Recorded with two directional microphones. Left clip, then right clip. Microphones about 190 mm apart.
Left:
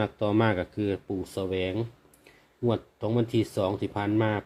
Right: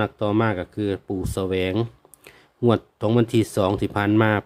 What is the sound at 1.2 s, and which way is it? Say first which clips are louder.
Speech: right 6 dB; 30° right (ahead or behind).